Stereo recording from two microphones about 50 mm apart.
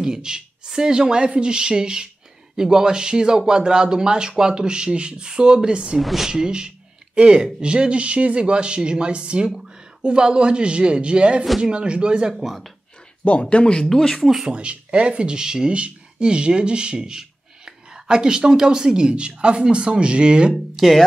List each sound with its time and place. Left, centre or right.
0.0 s speech: centre
5.9 s speech: centre
6.3 s speech: centre
12.4 s speech: centre
13.4 s speech: left
13.8 s speech: centre
14.2 s speech: centre
14.5 s speech: right
20.7 s speech: centre